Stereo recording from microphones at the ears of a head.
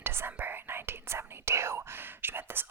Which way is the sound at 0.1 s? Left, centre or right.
Right.